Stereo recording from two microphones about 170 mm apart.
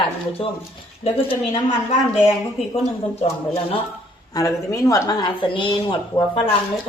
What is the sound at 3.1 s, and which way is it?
Speech, 35° left (ahead or behind).